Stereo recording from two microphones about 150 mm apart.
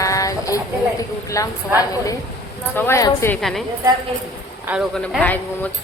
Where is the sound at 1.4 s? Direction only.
20° left (ahead or behind).